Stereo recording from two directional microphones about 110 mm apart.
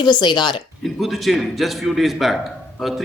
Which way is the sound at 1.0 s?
Centre (ahead or behind).